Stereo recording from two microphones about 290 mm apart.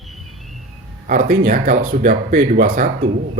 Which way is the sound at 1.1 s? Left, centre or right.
Right.